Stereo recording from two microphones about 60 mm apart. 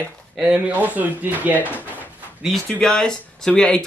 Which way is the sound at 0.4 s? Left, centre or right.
Right.